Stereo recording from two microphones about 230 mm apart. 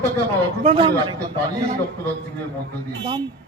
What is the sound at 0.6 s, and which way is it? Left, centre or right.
Speech, right.